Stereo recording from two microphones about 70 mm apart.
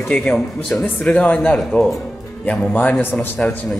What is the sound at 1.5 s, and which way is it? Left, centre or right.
Speech, centre.